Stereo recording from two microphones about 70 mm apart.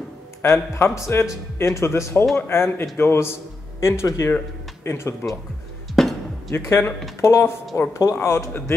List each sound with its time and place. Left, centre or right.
0.4 s speech: left
6.0 s music: centre
6.5 s speech: left